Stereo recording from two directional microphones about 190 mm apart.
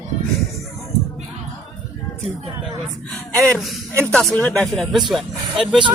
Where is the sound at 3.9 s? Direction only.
15° right (ahead or behind).